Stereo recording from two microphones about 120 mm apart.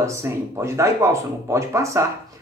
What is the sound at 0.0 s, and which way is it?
Speech, 20° right (ahead or behind).